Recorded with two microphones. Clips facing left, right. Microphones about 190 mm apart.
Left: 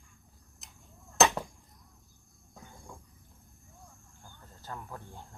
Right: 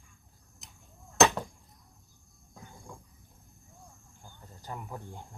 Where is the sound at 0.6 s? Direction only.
Centre (ahead or behind).